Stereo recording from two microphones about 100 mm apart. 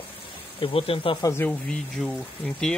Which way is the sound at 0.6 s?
70° left (ahead or behind).